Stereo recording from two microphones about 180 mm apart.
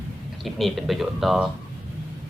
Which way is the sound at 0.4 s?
Centre (ahead or behind).